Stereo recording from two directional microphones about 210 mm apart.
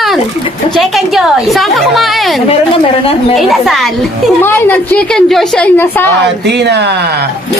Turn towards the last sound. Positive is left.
turn(degrees=-55)  # may be behind; listen again after turning